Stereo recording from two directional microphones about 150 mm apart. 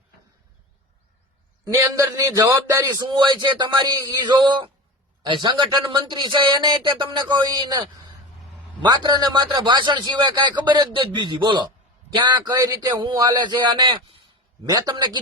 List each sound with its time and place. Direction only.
1.6 s a man's voice: 20° right (ahead or behind)